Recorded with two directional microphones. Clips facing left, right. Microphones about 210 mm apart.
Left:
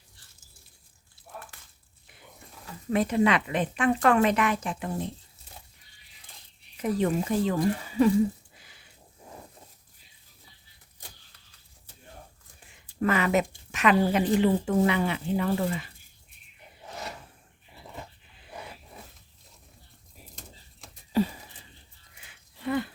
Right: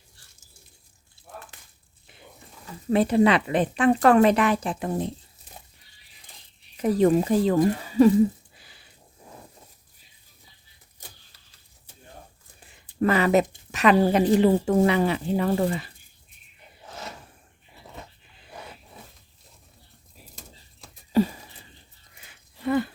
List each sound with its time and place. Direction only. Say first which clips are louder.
2.9 s speech: right 4 dB; 30° right (ahead or behind)
6.8 s speech: right 6 dB; 35° right (ahead or behind)
8.5 s a sound: right 2 dB; 35° right (ahead or behind)
13.0 s speech: right 4 dB; 35° right (ahead or behind)